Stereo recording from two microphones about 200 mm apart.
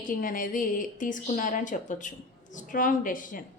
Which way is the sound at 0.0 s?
45° left (ahead or behind).